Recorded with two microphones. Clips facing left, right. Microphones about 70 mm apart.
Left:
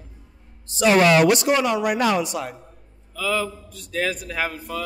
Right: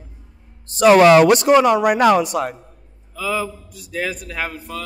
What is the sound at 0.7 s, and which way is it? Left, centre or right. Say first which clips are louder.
Speech: right 6 dB; right.